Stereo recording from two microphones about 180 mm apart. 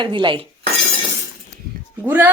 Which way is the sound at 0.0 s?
25° right (ahead or behind).